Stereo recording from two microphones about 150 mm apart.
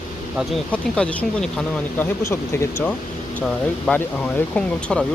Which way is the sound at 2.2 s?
20° left (ahead or behind).